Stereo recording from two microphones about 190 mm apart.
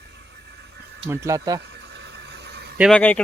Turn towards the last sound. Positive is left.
turn(degrees=5)  # may be behind; listen again after turning